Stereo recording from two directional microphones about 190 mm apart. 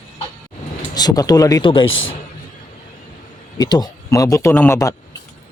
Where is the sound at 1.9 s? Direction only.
90° left.